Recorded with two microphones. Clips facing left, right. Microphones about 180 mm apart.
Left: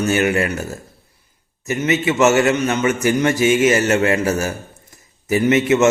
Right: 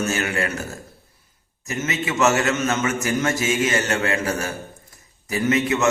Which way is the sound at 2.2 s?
20° left (ahead or behind).